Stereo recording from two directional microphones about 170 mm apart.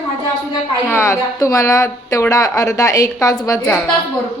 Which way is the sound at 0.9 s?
15° left (ahead or behind).